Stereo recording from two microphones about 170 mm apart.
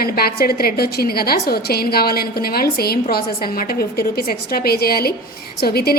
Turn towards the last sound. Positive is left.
turn(degrees=65)  # may be behind; listen again after turning